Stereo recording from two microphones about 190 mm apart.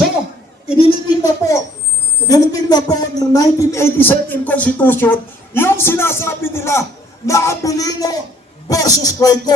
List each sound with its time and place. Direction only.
0.8 s speech: 20° left (ahead or behind)